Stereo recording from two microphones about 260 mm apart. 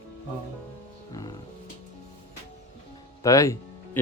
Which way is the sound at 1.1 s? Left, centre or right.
Centre.